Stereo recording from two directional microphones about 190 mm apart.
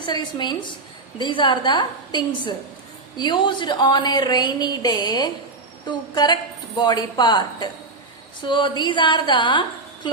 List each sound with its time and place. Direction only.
0.0 s a woman's voice: 25° left (ahead or behind)